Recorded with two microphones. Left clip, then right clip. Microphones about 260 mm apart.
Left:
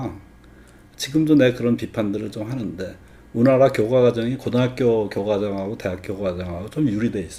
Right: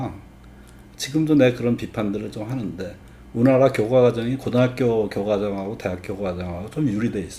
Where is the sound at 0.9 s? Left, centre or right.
Centre.